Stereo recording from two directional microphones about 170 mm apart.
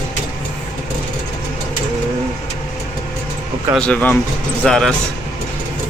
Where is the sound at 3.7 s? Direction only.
5° left (ahead or behind).